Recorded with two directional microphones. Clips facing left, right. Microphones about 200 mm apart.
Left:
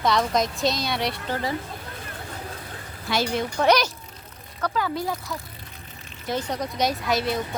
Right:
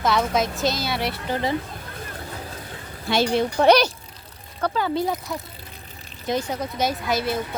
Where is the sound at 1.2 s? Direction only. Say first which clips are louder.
Right 3 dB; 20° right (ahead or behind).